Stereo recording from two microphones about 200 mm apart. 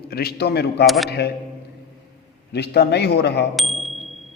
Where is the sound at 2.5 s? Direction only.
55° left (ahead or behind).